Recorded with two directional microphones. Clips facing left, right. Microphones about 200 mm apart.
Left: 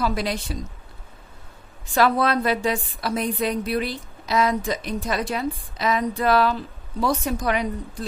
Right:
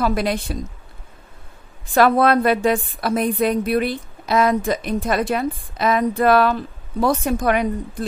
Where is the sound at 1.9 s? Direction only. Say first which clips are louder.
Right 5 dB; 55° right (ahead or behind).